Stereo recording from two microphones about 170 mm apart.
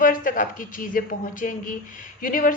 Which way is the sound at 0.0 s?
55° left (ahead or behind).